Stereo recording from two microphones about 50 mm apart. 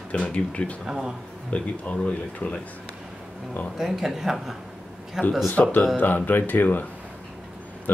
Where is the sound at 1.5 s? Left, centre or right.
Left.